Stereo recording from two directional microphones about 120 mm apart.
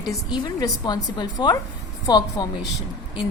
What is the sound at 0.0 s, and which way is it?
A woman's voice, 35° left (ahead or behind).